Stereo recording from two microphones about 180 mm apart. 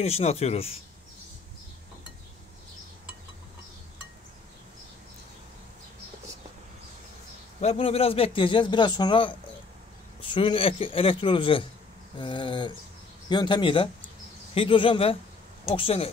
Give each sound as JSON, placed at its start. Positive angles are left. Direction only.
{"t": 0.0, "sound": "a man's voice", "side_deg": 35}
{"t": 7.6, "sound": "a man's voice", "side_deg": 30}